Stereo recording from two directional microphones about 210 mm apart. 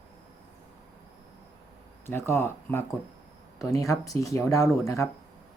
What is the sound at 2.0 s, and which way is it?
Speech, 10° left (ahead or behind).